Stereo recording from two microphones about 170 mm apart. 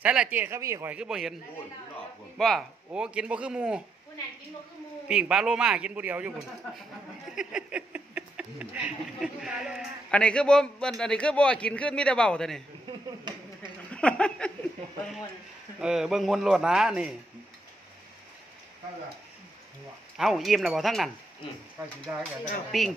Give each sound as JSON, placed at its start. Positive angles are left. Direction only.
{"t": 0.0, "sound": "speech", "side_deg": -5}
{"t": 0.9, "sound": "a man's voice", "side_deg": -5}
{"t": 2.3, "sound": "a man's voice", "side_deg": 0}
{"t": 5.0, "sound": "a man's voice", "side_deg": -5}
{"t": 12.8, "sound": "a sound", "side_deg": -25}
{"t": 13.9, "sound": "speech", "side_deg": 5}
{"t": 15.8, "sound": "a man's voice", "side_deg": -5}
{"t": 20.2, "sound": "a man's voice", "side_deg": 0}
{"t": 22.7, "sound": "a man's voice", "side_deg": 0}